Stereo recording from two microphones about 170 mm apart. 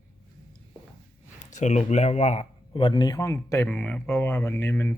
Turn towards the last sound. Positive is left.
turn(degrees=15)  # may be behind; listen again after turning